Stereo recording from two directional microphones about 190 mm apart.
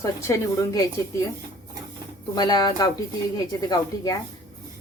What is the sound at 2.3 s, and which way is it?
Speech, 20° left (ahead or behind).